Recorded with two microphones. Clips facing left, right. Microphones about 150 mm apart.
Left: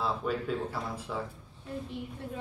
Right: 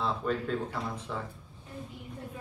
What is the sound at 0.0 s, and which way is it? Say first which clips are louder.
Speech: even; 5° left (ahead or behind).